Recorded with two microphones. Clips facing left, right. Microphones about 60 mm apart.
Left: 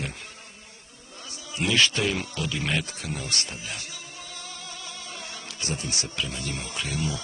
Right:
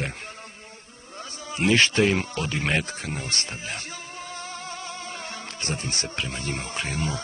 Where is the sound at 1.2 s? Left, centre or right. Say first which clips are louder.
Right 4 dB; right.